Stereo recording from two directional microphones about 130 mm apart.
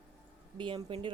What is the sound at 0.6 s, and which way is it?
Speech, 40° right (ahead or behind).